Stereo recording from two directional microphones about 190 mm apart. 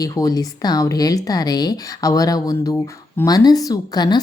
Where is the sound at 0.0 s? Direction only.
20° left (ahead or behind).